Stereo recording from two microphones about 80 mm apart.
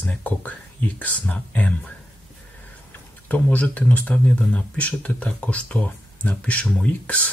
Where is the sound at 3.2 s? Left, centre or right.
Centre.